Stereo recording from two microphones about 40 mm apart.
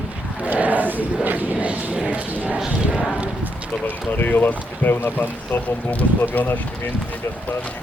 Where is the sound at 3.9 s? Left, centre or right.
Left.